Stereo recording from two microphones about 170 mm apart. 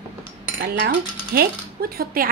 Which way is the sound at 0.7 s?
65° right (ahead or behind).